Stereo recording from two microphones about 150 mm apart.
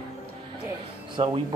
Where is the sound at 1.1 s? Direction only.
35° right (ahead or behind).